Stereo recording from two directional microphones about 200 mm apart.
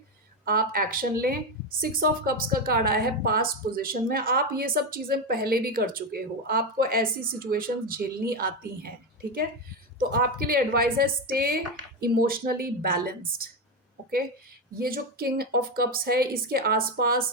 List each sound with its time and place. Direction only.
0.4 s a woman's voice: 45° right (ahead or behind)
10.1 s a woman's voice: 50° right (ahead or behind)
14.8 s a woman's voice: 50° right (ahead or behind)